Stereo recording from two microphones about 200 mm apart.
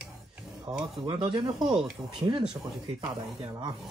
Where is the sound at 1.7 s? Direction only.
Centre (ahead or behind).